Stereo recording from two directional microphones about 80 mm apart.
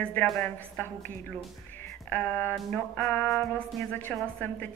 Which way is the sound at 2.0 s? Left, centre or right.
Left.